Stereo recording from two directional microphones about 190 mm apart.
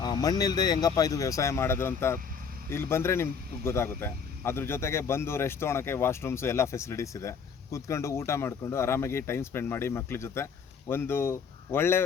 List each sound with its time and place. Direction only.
0.0 s speech: 20° left (ahead or behind)